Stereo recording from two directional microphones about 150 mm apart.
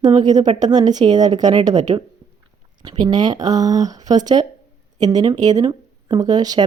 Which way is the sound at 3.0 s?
30° right (ahead or behind).